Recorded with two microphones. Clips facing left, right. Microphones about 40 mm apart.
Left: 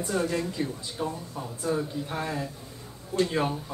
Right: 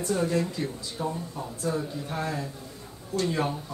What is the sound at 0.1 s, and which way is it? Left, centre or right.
Speech, centre.